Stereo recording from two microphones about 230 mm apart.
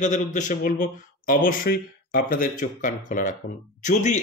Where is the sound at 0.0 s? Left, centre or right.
Left.